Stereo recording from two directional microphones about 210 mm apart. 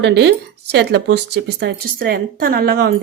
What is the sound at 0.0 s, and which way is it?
Speech, 55° right (ahead or behind).